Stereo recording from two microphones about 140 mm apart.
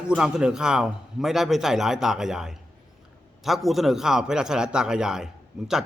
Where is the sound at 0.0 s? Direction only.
5° right (ahead or behind).